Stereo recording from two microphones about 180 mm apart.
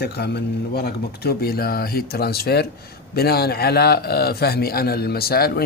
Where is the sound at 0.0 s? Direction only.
65° left (ahead or behind).